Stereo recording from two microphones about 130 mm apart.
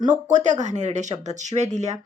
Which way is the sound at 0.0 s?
70° right (ahead or behind).